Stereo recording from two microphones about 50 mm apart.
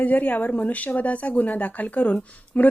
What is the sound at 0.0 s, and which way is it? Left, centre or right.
Speech, left.